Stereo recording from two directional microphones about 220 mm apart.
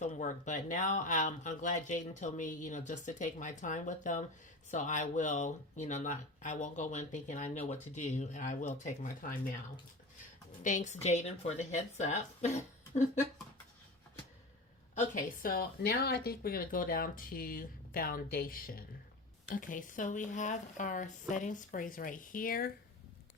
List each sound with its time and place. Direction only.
0.0 s speech: 35° left (ahead or behind)
10.6 s speech: 35° left (ahead or behind)
14.9 s speech: 40° left (ahead or behind)